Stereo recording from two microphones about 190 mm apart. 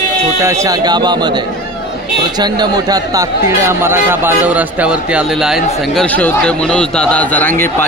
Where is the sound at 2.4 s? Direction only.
20° right (ahead or behind).